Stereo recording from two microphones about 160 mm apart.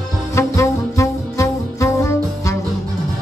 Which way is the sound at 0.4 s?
20° left (ahead or behind).